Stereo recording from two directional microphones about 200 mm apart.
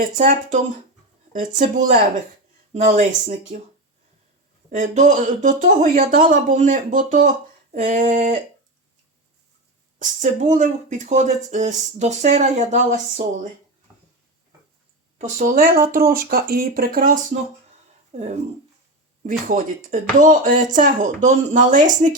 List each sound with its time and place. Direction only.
0.0 s speech: 45° right (ahead or behind)
4.7 s speech: 40° right (ahead or behind)
10.0 s speech: 40° right (ahead or behind)
15.2 s speech: 40° right (ahead or behind)
18.1 s speech: 35° right (ahead or behind)